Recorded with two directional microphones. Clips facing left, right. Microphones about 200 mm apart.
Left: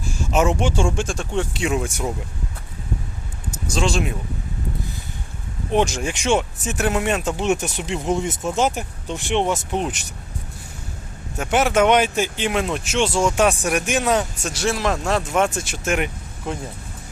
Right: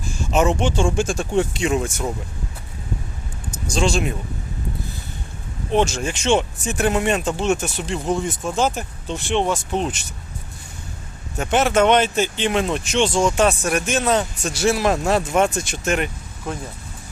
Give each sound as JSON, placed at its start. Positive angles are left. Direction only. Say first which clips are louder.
{"t": 0.3, "sound": "speech", "louder": "right 1 dB", "side_deg": 5}
{"t": 0.9, "sound": "speech", "louder": "right 3 dB", "side_deg": -5}
{"t": 1.5, "sound": "speech", "louder": "right 1 dB", "side_deg": 5}
{"t": 3.5, "sound": "speech", "louder": "right 2 dB", "side_deg": 0}
{"t": 5.7, "sound": "speech", "louder": "even", "side_deg": 15}
{"t": 7.4, "sound": "speech", "louder": "even", "side_deg": 15}
{"t": 11.3, "sound": "speech", "louder": "right 1 dB", "side_deg": 10}
{"t": 14.5, "sound": "speech", "louder": "right 4 dB", "side_deg": -5}